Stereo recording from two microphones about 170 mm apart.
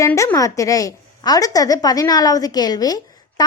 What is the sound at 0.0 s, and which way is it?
A woman's voice, 15° left (ahead or behind).